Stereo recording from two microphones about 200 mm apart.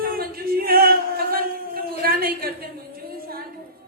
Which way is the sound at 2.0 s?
45° right (ahead or behind).